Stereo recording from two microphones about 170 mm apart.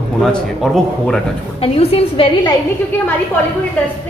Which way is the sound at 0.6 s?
Centre (ahead or behind).